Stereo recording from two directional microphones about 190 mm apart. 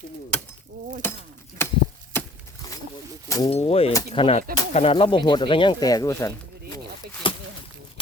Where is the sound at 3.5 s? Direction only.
30° left (ahead or behind); by 6.3 s 15° left (ahead or behind).